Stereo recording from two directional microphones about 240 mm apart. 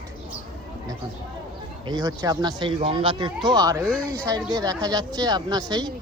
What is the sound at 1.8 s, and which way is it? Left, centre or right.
Speech, centre.